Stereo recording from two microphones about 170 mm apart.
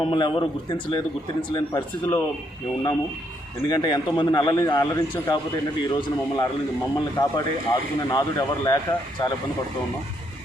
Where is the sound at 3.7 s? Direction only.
25° left (ahead or behind).